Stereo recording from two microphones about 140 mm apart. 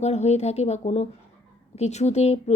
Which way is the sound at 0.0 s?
50° left (ahead or behind).